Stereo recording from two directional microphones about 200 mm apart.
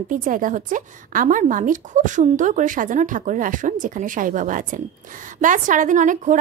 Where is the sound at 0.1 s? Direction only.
40° right (ahead or behind).